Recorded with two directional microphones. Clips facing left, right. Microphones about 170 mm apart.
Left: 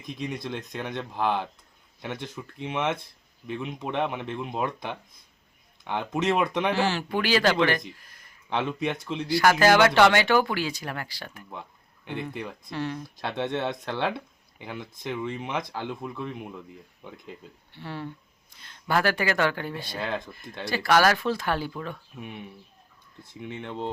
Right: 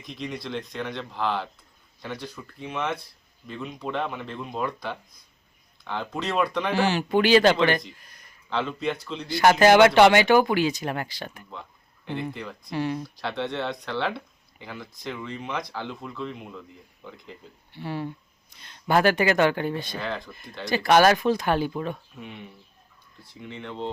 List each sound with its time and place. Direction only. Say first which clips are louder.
0.7 s a man's voice: even; 20° left (ahead or behind)
6.7 s speech: right 4 dB; 15° right (ahead or behind)
8.4 s a man's voice: even; 20° left (ahead or behind)
9.2 s speech: right 3 dB; 20° right (ahead or behind)
12.1 s a man's voice: right 1 dB; 20° left (ahead or behind)
12.7 s speech: right 4 dB; 10° right (ahead or behind)
13.2 s a man's voice: left 1 dB; 20° left (ahead or behind)
17.7 s speech: right 4 dB; 15° right (ahead or behind)
20.1 s a man's voice: even; 20° left (ahead or behind)
20.7 s speech: right 3 dB; 20° right (ahead or behind)